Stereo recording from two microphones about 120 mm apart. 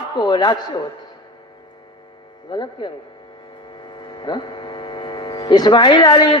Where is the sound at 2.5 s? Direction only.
40° left (ahead or behind).